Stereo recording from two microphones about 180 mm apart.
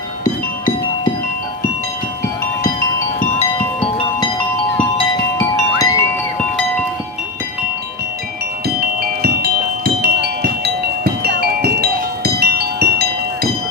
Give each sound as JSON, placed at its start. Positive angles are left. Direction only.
{"t": 3.3, "sound": "music", "side_deg": 30}
{"t": 8.6, "sound": "music", "side_deg": -60}